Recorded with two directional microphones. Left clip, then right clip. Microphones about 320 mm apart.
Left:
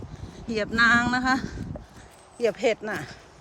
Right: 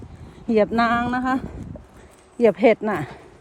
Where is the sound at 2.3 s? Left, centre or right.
Centre.